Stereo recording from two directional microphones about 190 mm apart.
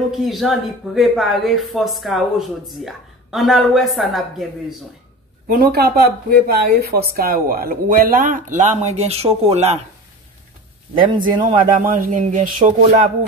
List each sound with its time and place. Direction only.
0.1 s speech: centre (ahead or behind)
5.5 s speech: 55° right (ahead or behind); by 9.8 s 35° right (ahead or behind)
11.0 s speech: 45° right (ahead or behind)